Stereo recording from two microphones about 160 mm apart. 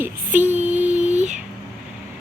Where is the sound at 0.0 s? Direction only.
10° right (ahead or behind).